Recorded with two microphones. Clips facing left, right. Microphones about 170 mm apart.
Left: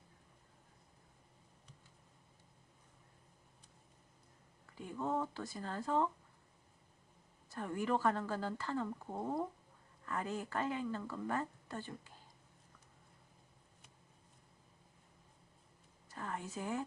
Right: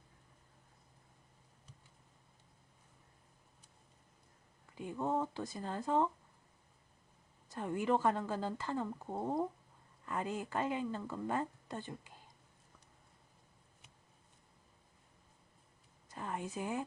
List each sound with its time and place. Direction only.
4.7 s speech: 20° right (ahead or behind)
7.5 s speech: 20° right (ahead or behind)
16.0 s a sound: 15° right (ahead or behind)